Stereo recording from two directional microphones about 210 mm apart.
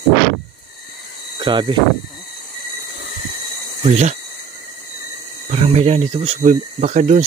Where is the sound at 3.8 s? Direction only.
35° right (ahead or behind).